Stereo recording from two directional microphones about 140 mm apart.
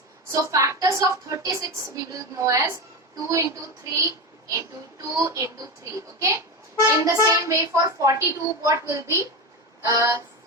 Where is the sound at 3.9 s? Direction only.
20° right (ahead or behind).